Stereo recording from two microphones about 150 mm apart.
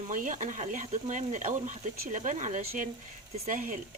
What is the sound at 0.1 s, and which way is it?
Speech, 60° right (ahead or behind).